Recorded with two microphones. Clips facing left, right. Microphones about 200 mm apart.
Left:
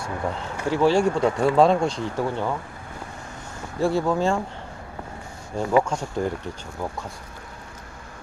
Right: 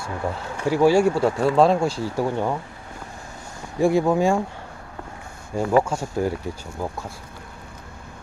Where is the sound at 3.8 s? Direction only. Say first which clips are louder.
Right 3 dB; 15° right (ahead or behind).